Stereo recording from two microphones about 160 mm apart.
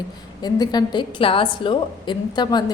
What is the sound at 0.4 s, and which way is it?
A woman's voice, 25° left (ahead or behind).